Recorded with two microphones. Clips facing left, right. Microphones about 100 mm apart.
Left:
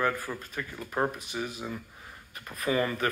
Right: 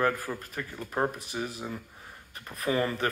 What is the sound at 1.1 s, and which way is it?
Speech, 35° right (ahead or behind).